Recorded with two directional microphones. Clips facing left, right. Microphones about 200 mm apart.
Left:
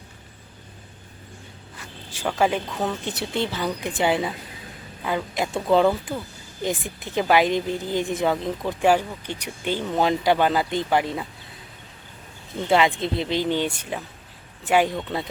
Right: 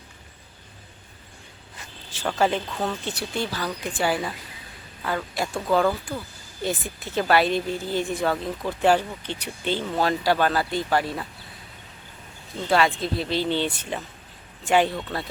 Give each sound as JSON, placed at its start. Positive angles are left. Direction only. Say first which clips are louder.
{"t": 2.1, "sound": "a woman's voice", "louder": "left 1 dB", "side_deg": 10}
{"t": 12.6, "sound": "speech", "louder": "left 2 dB", "side_deg": 20}